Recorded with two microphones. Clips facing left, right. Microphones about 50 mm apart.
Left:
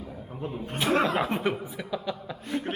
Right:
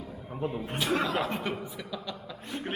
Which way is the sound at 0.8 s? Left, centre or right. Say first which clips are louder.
Left 4 dB; left.